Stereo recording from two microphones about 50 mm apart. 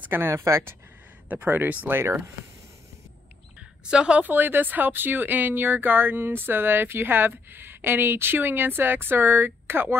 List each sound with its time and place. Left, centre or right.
0.3 s speech: right
1.3 s speech: right
1.9 s speech: right
3.9 s a woman's voice: centre
4.2 s speech: right